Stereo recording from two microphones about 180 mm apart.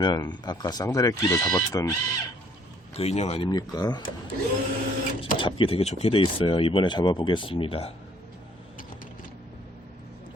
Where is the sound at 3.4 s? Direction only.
20° left (ahead or behind).